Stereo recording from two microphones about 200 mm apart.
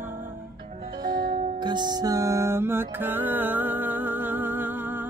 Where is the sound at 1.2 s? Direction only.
50° right (ahead or behind).